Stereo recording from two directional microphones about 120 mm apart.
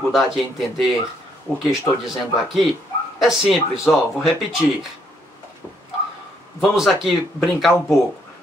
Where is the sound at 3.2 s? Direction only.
5° right (ahead or behind).